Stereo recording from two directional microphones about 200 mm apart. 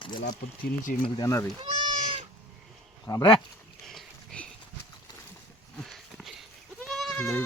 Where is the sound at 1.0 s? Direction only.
20° left (ahead or behind).